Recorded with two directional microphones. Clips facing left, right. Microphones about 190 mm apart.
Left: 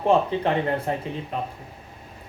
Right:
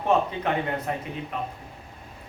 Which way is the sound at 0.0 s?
30° left (ahead or behind).